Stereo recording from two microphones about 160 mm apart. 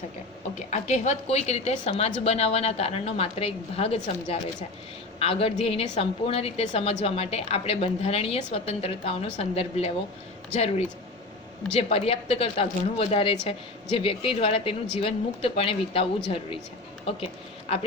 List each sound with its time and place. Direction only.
0.7 s a woman's voice: 45° left (ahead or behind)
17.7 s a woman's voice: 35° left (ahead or behind)